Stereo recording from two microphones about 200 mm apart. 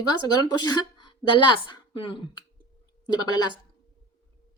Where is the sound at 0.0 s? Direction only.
20° left (ahead or behind).